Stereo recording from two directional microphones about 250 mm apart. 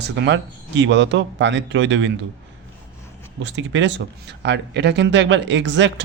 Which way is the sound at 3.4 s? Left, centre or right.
Right.